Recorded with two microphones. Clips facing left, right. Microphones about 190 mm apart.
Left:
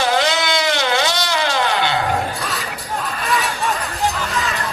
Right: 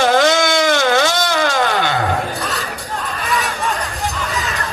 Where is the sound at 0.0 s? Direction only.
50° right (ahead or behind).